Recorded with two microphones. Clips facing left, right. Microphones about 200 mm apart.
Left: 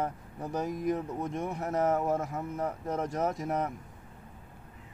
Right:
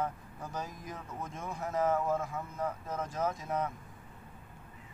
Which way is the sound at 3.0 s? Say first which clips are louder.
Left 2 dB; 75° left (ahead or behind).